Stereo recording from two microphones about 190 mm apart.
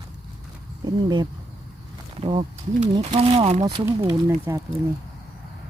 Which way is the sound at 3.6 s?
20° right (ahead or behind).